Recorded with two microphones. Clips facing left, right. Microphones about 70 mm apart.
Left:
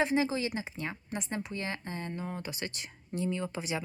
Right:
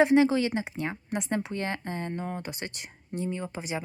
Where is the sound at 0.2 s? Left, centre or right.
Right.